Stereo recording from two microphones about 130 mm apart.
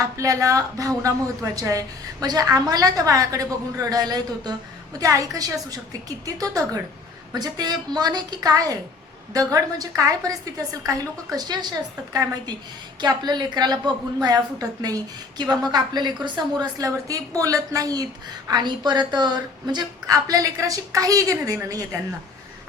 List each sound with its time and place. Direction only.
0.0 s a woman's voice: 25° right (ahead or behind)
13.0 s a woman's voice: 35° right (ahead or behind)